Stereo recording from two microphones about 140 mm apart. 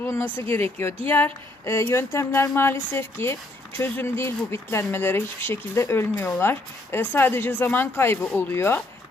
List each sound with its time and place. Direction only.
0.0 s speech: 20° left (ahead or behind)